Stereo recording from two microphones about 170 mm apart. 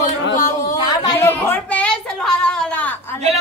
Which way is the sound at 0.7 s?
25° left (ahead or behind).